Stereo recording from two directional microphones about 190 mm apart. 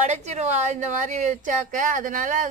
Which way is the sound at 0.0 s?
35° right (ahead or behind).